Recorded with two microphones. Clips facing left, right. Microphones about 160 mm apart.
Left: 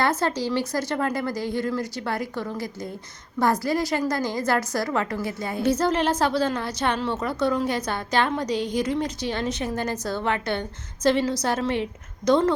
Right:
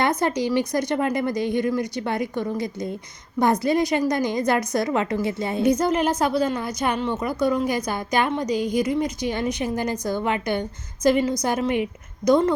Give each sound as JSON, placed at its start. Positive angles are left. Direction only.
{"t": 0.0, "sound": "a woman's voice", "side_deg": -15}